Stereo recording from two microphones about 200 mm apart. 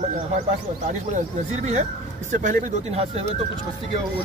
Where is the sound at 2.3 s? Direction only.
35° right (ahead or behind).